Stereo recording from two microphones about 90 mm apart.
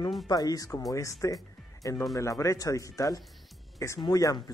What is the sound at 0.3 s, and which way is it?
Speech, 45° left (ahead or behind).